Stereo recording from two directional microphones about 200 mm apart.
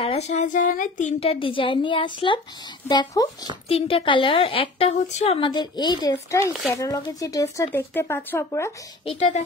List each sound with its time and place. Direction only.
0.0 s a woman's voice: 35° left (ahead or behind); by 8.7 s 15° left (ahead or behind)
9.0 s a child's voice: 35° left (ahead or behind)